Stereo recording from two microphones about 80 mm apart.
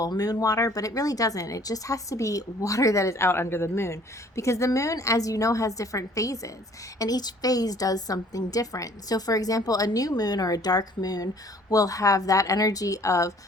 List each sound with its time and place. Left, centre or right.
0.0 s speech: left
7.0 s speech: left